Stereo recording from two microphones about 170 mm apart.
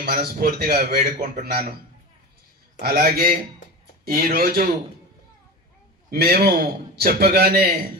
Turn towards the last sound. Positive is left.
turn(degrees=-65)  # may be behind; listen again after turning